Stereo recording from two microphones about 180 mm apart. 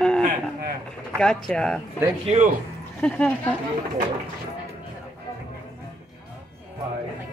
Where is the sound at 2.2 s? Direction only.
35° right (ahead or behind).